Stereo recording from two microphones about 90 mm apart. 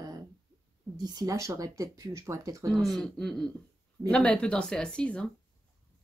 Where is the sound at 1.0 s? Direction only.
45° right (ahead or behind).